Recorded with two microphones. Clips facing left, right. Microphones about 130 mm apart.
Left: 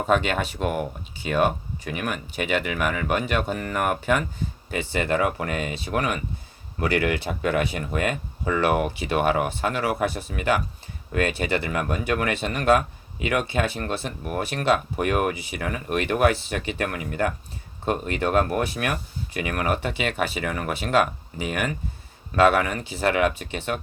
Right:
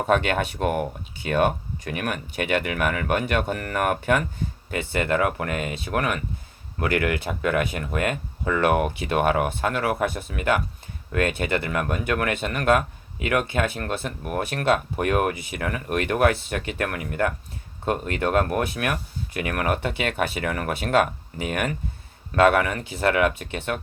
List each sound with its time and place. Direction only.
0.0 s speech: 60° right (ahead or behind)